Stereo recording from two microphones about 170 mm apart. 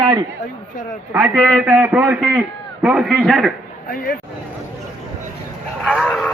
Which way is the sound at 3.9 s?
55° left (ahead or behind).